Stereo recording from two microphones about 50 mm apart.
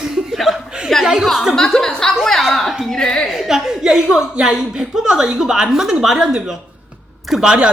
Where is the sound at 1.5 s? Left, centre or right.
Centre.